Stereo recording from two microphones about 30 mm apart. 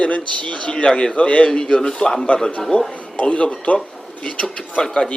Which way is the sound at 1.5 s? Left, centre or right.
Left.